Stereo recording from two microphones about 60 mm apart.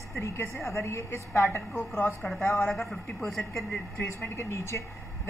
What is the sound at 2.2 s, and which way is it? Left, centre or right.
A woman's voice, centre.